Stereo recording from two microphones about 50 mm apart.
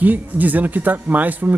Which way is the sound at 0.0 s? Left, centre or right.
Right.